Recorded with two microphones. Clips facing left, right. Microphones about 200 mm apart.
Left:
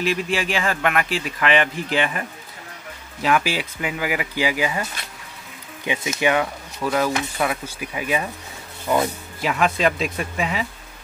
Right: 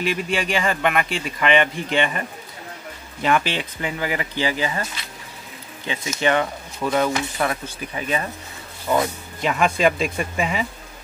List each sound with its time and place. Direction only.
0.0 s speech: centre (ahead or behind)
5.9 s speech: 15° left (ahead or behind)